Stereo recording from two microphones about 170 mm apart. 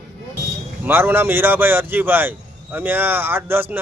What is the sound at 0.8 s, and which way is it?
Speech, 10° right (ahead or behind).